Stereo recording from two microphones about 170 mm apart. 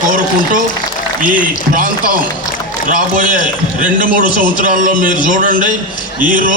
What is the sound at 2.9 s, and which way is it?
A man's voice, 55° right (ahead or behind).